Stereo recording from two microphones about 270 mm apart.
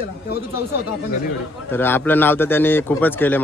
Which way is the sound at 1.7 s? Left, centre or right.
Centre.